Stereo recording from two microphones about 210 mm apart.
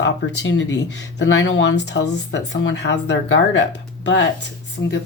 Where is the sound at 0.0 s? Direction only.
60° left (ahead or behind).